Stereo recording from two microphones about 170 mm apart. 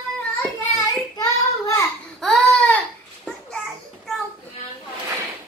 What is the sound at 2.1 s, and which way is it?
Baby cry, 5° left (ahead or behind).